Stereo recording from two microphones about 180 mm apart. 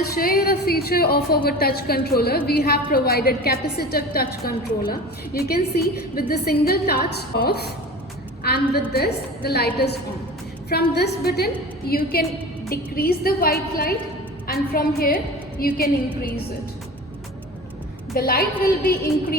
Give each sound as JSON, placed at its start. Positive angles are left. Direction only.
{"t": 0.2, "sound": "a woman's voice", "side_deg": 55}
{"t": 18.1, "sound": "a woman's voice", "side_deg": 60}